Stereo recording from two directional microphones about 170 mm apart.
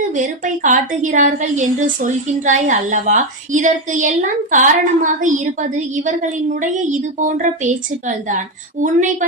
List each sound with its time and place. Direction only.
0.1 s a woman's voice: 50° right (ahead or behind)